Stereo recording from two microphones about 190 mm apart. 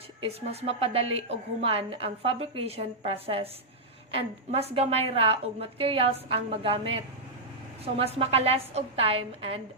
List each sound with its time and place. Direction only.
0.2 s a woman's voice: 30° right (ahead or behind)